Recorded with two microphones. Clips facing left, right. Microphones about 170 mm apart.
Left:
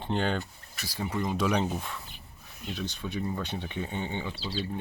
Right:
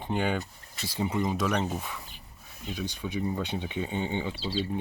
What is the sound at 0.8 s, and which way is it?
Speech, 25° right (ahead or behind).